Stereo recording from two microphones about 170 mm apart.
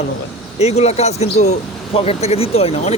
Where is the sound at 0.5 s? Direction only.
40° left (ahead or behind).